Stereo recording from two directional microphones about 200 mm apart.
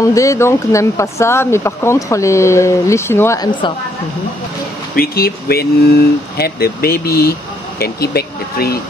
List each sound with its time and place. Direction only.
0.0 s speech: 15° left (ahead or behind)
4.9 s speech: 50° left (ahead or behind)